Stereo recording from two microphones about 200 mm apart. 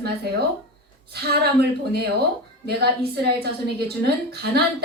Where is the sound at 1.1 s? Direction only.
50° right (ahead or behind).